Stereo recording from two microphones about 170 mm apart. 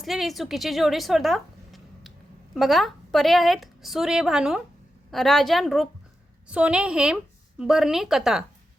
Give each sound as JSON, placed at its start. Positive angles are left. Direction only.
{"t": 0.0, "sound": "a woman's voice", "side_deg": 0}